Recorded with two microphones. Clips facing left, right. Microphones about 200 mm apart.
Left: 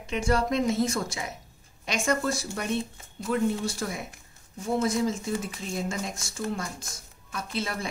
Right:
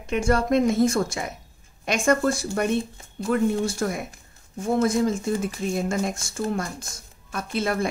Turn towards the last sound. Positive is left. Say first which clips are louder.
# right 7 dB
turn(degrees=-50)  # may be behind; listen again after turning